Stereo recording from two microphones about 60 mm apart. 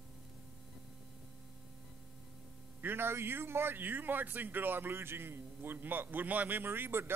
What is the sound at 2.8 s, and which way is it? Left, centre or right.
A man's voice, right.